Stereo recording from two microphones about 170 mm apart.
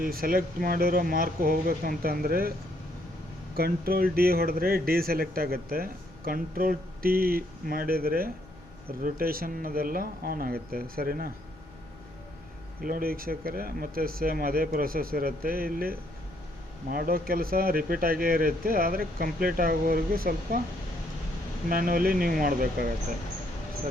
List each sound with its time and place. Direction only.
0.0 s speech: 60° right (ahead or behind)
3.5 s speech: 60° right (ahead or behind)
12.8 s speech: 60° right (ahead or behind)
21.7 s speech: 55° right (ahead or behind)